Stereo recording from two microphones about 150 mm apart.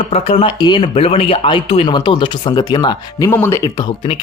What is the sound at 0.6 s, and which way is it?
Speech, 30° left (ahead or behind).